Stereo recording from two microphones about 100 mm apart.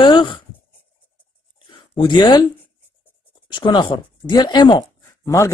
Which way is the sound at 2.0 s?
45° left (ahead or behind).